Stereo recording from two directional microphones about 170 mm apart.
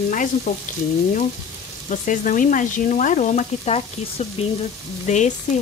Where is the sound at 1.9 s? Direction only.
50° left (ahead or behind).